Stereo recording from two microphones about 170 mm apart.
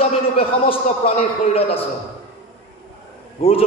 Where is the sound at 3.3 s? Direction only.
35° left (ahead or behind).